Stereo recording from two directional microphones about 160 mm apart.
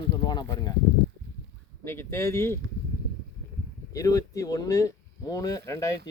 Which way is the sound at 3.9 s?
20° left (ahead or behind).